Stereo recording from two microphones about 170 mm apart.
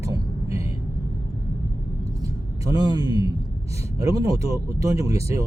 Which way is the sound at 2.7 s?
25° right (ahead or behind).